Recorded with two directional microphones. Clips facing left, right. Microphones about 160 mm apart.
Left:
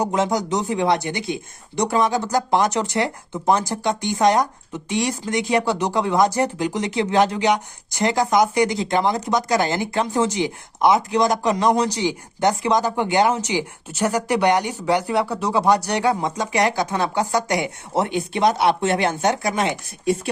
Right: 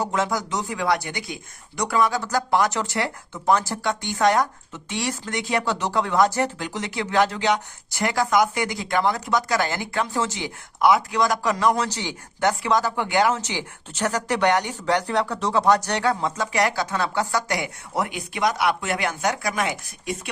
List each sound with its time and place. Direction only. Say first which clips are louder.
0.0 s speech: left 4 dB; 20° left (ahead or behind)